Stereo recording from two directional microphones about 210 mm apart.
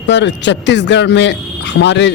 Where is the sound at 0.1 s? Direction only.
55° left (ahead or behind).